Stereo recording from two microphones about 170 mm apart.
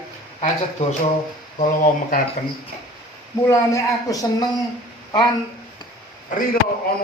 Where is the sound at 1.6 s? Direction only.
55° left (ahead or behind).